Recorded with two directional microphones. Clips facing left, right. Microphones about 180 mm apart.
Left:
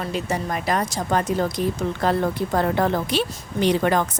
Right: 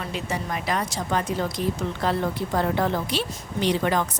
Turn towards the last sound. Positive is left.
turn(degrees=50)  # may be behind; listen again after turning